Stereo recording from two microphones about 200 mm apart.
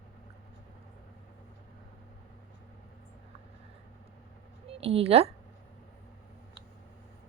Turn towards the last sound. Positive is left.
turn(degrees=-30)  # may be behind; listen again after turning